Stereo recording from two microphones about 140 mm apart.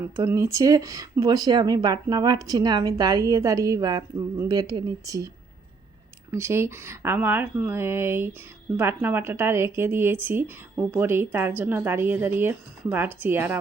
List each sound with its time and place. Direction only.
0.3 s speech: 20° right (ahead or behind)
6.3 s speech: 20° right (ahead or behind)